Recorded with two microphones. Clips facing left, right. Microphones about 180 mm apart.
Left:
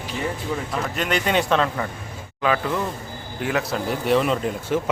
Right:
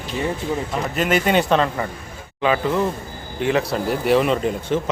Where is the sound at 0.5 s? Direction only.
20° right (ahead or behind).